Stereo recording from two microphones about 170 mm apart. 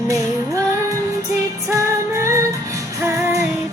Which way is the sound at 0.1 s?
20° right (ahead or behind).